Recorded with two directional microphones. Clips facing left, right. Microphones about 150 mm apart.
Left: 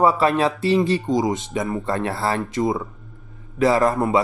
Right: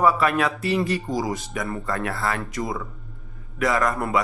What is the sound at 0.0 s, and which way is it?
Speech, 30° left (ahead or behind).